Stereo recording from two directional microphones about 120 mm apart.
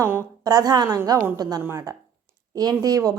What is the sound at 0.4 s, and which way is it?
A woman's voice, 30° right (ahead or behind).